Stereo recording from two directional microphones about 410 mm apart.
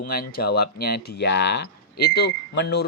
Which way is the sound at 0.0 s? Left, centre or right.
Left.